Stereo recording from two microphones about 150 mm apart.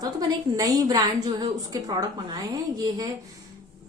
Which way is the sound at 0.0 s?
25° right (ahead or behind).